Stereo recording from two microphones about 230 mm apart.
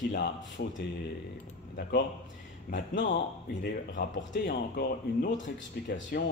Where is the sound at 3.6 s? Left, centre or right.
Left.